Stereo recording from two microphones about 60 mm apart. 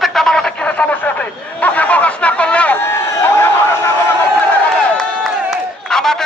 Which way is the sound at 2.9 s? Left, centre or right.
Left.